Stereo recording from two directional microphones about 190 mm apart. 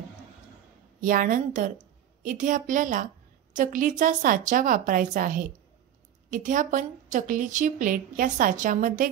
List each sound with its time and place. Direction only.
1.0 s a woman's voice: 45° right (ahead or behind)